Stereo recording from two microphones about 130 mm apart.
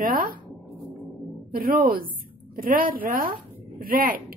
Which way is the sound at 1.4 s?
90° right.